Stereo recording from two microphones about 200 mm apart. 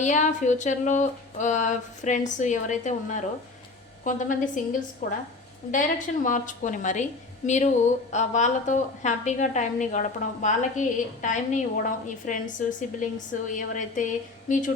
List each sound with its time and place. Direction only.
0.0 s a woman's voice: 35° left (ahead or behind)
6.2 s a woman's voice: 40° left (ahead or behind)